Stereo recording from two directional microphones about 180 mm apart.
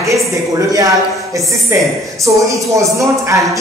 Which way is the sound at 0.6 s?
20° right (ahead or behind).